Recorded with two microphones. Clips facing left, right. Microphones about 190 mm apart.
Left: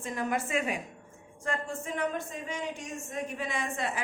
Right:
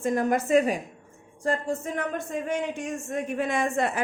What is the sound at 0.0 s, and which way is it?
A woman's voice, 45° right (ahead or behind).